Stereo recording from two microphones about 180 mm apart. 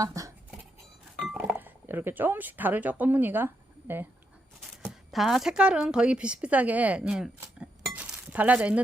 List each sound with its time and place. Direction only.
0.0 s speech: 20° right (ahead or behind)
1.2 s a woman's voice: centre (ahead or behind)